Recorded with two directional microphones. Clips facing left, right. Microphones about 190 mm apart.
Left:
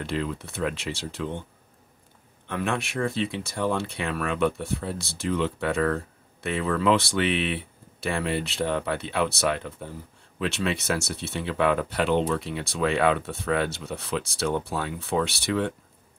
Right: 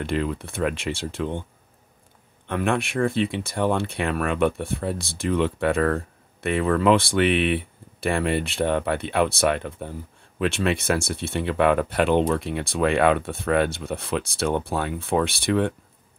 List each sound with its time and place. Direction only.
0.0 s speech: 55° right (ahead or behind)
2.4 s speech: 55° right (ahead or behind)